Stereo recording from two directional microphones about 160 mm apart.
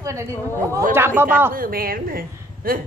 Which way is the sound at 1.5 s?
65° right (ahead or behind).